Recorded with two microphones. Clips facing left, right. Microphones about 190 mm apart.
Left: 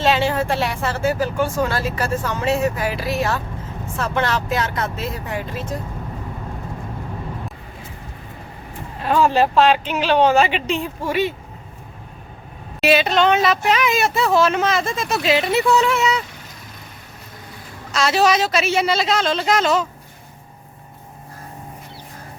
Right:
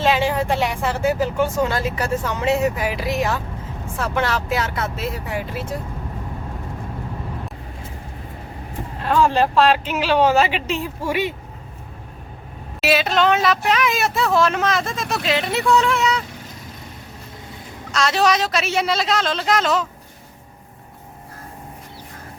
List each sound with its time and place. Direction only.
0.0 s speech: 15° right (ahead or behind)
9.0 s speech: 5° left (ahead or behind)
12.8 s speech: centre (ahead or behind)
17.9 s speech: 5° left (ahead or behind)